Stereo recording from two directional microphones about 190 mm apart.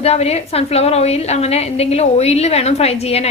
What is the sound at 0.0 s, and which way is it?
A woman's voice, 35° left (ahead or behind).